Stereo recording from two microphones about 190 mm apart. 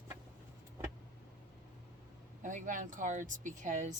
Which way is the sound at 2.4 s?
40° right (ahead or behind).